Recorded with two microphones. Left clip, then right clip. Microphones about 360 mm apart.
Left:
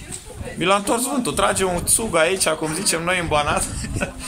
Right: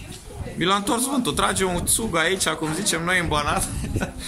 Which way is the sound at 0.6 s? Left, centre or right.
Centre.